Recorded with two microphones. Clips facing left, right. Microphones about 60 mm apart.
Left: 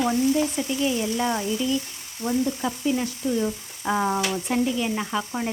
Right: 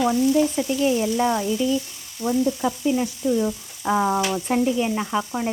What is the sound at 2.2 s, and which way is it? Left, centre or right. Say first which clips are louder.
Sizzle: right 3 dB; left.